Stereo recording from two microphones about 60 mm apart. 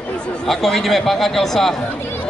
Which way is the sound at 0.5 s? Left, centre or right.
Centre.